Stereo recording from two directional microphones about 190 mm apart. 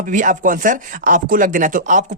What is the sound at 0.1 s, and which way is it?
Speech, 40° right (ahead or behind).